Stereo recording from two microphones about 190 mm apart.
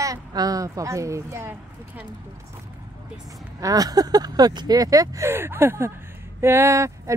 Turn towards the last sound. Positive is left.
turn(degrees=-15)  # may be behind; listen again after turning